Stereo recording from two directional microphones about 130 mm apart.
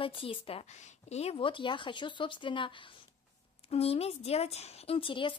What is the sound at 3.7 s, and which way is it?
A woman's voice, 50° left (ahead or behind).